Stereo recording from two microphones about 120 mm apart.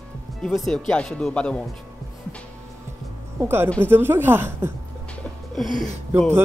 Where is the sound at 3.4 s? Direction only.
20° right (ahead or behind).